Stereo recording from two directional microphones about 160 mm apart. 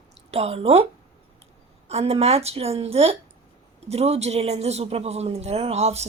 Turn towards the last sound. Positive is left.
turn(degrees=-40)  # may be behind; listen again after turning